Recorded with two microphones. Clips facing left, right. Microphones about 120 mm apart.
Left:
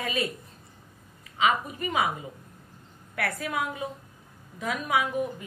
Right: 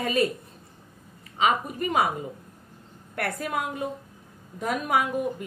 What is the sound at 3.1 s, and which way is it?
A woman's voice, 45° right (ahead or behind).